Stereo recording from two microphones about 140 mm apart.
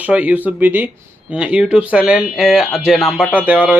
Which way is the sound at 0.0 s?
10° right (ahead or behind).